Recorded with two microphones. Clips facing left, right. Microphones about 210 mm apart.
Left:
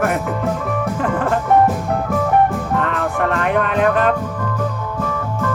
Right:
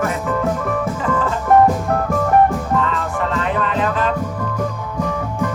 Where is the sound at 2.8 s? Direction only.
60° left (ahead or behind).